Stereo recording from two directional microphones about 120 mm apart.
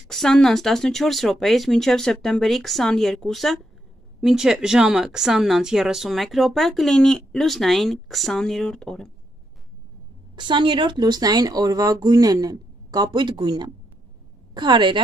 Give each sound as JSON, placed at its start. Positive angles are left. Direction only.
{"t": 0.1, "sound": "speech", "side_deg": 5}
{"t": 10.3, "sound": "speech", "side_deg": -40}